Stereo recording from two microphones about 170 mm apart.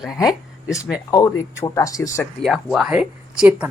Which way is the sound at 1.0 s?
20° left (ahead or behind).